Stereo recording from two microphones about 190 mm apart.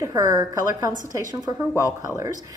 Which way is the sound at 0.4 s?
20° right (ahead or behind).